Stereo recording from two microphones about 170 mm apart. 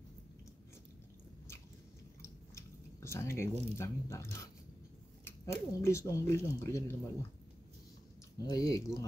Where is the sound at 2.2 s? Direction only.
15° left (ahead or behind).